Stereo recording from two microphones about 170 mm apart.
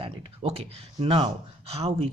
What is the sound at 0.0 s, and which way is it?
Speech, 30° right (ahead or behind).